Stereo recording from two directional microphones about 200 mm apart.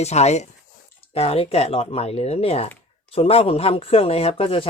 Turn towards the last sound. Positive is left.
turn(degrees=30)  # may be behind; listen again after turning